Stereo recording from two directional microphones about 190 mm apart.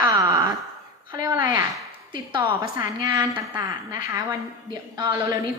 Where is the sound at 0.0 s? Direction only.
20° right (ahead or behind).